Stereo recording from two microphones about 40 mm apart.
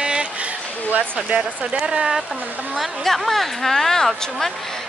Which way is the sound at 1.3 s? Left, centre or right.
Right.